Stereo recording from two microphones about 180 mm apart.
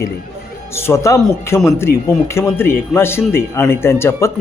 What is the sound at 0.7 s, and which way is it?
Speech, 15° left (ahead or behind).